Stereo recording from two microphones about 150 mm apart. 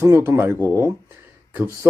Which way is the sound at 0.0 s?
15° right (ahead or behind).